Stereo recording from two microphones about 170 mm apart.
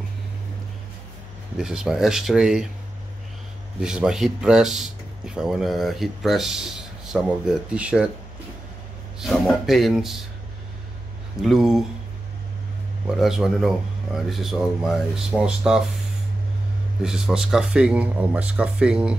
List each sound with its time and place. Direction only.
1.6 s speech: 5° right (ahead or behind)
3.8 s speech: 5° right (ahead or behind)
9.2 s speech: centre (ahead or behind)
11.4 s speech: centre (ahead or behind)
13.0 s speech: 5° right (ahead or behind)
17.0 s speech: 5° right (ahead or behind)